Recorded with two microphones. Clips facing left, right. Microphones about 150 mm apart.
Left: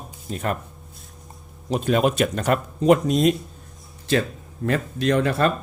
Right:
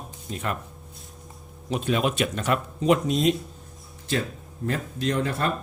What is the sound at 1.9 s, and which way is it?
Speech, 45° left (ahead or behind).